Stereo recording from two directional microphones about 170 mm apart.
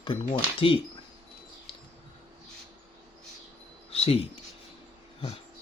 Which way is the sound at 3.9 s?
35° left (ahead or behind).